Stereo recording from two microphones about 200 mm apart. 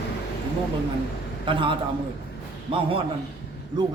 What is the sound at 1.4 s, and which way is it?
A man's voice, 25° right (ahead or behind).